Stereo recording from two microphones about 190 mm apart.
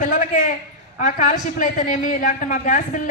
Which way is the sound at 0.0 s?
45° left (ahead or behind).